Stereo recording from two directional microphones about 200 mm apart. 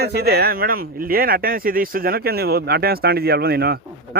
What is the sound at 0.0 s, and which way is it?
Speech, 55° right (ahead or behind).